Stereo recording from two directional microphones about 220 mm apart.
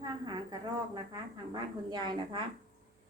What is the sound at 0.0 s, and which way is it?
A woman's voice, 15° right (ahead or behind).